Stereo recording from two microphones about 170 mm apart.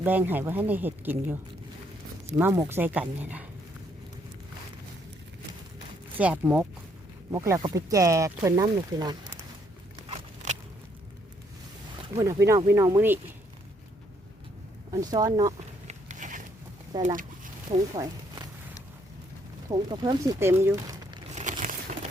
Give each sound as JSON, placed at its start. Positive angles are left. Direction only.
{"t": 0.0, "sound": "speech", "side_deg": -10}
{"t": 2.4, "sound": "speech", "side_deg": -15}
{"t": 6.1, "sound": "speech", "side_deg": -10}
{"t": 10.1, "sound": "a sound", "side_deg": -45}
{"t": 12.1, "sound": "speech", "side_deg": -20}
{"t": 15.1, "sound": "speech", "side_deg": -20}
{"t": 15.9, "sound": "a sound", "side_deg": -45}
{"t": 17.7, "sound": "speech", "side_deg": -25}
{"t": 19.7, "sound": "speech", "side_deg": -25}
{"t": 21.6, "sound": "a sound", "side_deg": -45}